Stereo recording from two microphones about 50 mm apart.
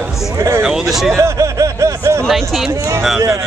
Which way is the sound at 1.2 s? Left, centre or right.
Right.